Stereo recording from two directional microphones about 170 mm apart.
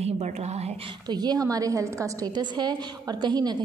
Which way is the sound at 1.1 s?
25° right (ahead or behind).